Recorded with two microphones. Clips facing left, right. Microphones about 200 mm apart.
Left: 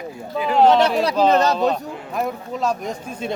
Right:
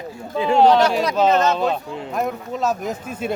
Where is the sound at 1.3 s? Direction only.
35° left (ahead or behind).